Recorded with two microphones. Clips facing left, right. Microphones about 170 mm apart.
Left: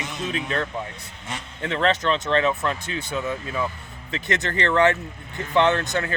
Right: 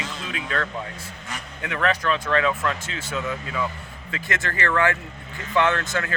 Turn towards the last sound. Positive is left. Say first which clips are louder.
# left 2 dB
turn(degrees=20)  # may be behind; listen again after turning